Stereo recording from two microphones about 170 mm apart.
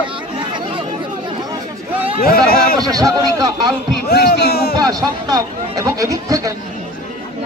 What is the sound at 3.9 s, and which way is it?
Speech, 70° left (ahead or behind).